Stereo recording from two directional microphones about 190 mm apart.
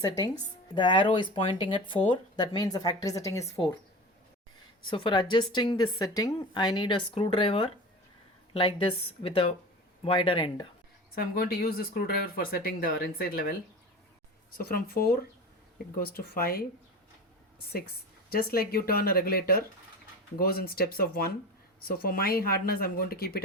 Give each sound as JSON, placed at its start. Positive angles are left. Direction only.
{"t": 0.7, "sound": "a woman's voice", "side_deg": 25}
{"t": 4.9, "sound": "a woman's voice", "side_deg": 25}
{"t": 11.1, "sound": "speech", "side_deg": 55}
{"t": 14.7, "sound": "speech", "side_deg": 50}
{"t": 18.3, "sound": "speech", "side_deg": 55}